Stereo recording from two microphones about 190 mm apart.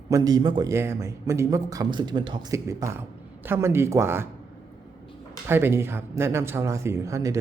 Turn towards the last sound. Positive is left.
turn(degrees=-15)  # may be behind; listen again after turning